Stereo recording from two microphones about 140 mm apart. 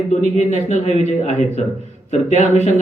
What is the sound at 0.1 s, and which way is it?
Speech, 55° left (ahead or behind).